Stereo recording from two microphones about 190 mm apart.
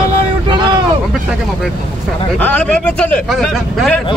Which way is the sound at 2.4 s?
5° left (ahead or behind).